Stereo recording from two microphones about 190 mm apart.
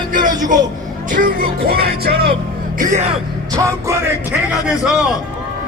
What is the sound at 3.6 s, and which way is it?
Speech, 15° right (ahead or behind).